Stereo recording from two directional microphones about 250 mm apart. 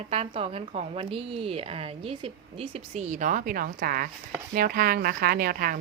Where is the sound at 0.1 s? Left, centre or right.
Right.